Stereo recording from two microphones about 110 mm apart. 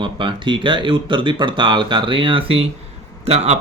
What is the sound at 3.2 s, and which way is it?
Speech, 70° right (ahead or behind).